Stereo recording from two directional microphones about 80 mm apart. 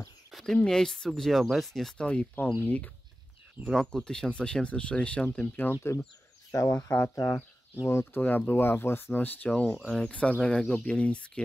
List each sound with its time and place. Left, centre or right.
0.3 s speech: centre
2.6 s speech: centre
3.6 s speech: centre
5.7 s speech: left
9.8 s speech: centre